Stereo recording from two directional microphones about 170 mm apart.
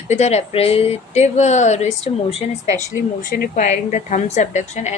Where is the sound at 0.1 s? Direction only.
40° left (ahead or behind).